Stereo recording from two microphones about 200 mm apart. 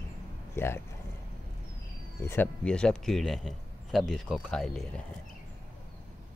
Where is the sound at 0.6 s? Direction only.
10° left (ahead or behind).